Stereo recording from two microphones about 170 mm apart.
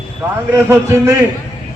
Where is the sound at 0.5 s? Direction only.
15° right (ahead or behind).